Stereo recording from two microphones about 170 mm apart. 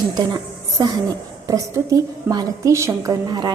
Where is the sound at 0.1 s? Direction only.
25° right (ahead or behind).